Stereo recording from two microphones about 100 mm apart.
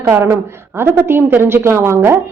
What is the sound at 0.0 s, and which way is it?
A woman's voice, 30° right (ahead or behind).